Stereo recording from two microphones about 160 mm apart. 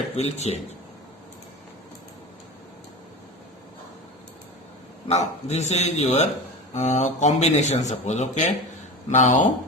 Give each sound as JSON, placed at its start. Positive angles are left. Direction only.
{"t": 0.2, "sound": "speech", "side_deg": 45}
{"t": 5.0, "sound": "speech", "side_deg": 45}